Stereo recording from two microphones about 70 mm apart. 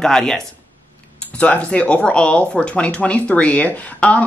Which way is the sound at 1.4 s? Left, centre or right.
Left.